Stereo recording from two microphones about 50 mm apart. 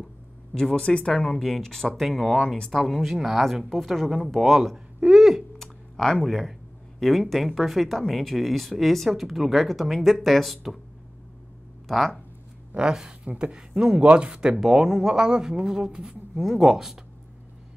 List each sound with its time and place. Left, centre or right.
0.6 s speech: centre
2.3 s speech: centre
5.0 s a sound: centre
5.6 s a sound: centre
6.2 s speech: centre
13.2 s speech: right